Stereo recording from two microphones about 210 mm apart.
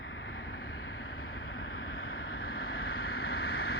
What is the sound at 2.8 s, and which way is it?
Vehicle, 50° left (ahead or behind).